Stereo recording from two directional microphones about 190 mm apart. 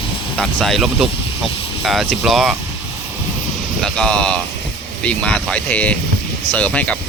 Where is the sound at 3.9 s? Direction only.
5° left (ahead or behind).